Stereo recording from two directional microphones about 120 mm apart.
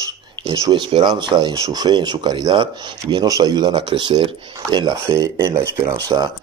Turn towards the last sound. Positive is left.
turn(degrees=-35)  # may be behind; listen again after turning